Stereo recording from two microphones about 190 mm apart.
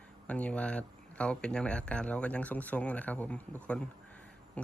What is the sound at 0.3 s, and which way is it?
Speech, 5° left (ahead or behind).